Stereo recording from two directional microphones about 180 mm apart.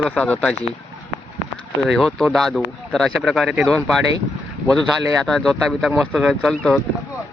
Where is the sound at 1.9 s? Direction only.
5° left (ahead or behind).